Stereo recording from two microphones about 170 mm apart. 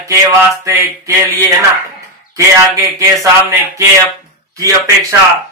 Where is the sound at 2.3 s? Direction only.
20° right (ahead or behind).